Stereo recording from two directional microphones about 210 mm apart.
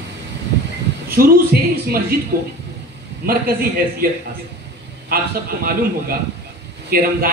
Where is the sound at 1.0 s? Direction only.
45° right (ahead or behind).